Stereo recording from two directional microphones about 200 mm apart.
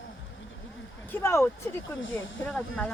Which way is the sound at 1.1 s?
10° left (ahead or behind).